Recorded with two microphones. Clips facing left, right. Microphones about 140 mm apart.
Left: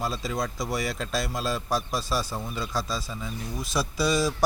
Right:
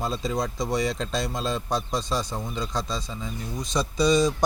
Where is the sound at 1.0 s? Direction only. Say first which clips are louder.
Right 1 dB; 20° right (ahead or behind).